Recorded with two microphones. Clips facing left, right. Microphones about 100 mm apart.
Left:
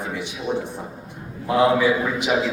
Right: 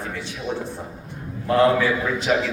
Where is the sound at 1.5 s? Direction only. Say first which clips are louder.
Even; 15° left (ahead or behind).